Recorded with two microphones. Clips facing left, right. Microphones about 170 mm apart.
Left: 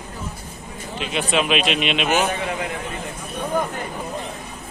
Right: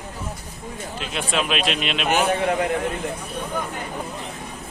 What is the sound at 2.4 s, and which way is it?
Speech, 50° right (ahead or behind).